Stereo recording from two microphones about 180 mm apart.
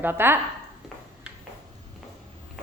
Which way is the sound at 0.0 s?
10° right (ahead or behind).